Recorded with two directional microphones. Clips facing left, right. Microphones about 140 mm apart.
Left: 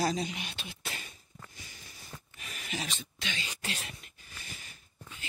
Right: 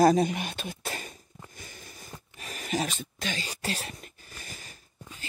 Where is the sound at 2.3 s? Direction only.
40° right (ahead or behind).